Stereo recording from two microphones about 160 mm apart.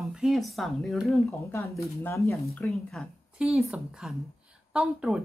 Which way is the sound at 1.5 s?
15° left (ahead or behind).